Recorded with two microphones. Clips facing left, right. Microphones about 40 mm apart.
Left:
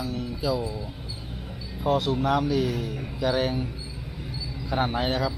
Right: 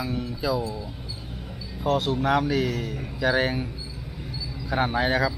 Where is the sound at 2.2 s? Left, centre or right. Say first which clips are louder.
Right 1 dB; centre.